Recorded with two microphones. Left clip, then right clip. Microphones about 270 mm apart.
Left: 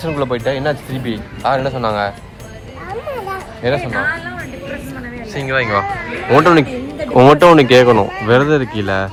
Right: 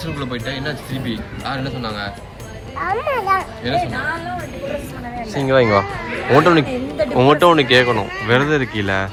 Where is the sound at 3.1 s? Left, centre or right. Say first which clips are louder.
Right 7 dB; centre.